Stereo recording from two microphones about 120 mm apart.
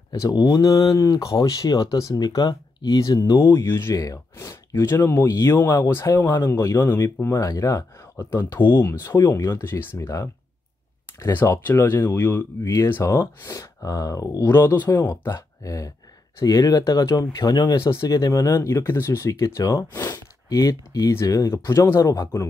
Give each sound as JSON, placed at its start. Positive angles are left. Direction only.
{"t": 0.1, "sound": "speech", "side_deg": 30}